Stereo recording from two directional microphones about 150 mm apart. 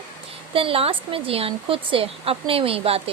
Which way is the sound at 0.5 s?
40° right (ahead or behind).